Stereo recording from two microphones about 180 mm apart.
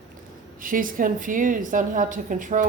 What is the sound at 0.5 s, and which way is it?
A woman's voice, 50° right (ahead or behind).